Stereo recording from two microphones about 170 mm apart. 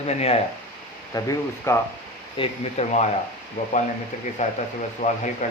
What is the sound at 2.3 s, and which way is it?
Speech, 40° left (ahead or behind).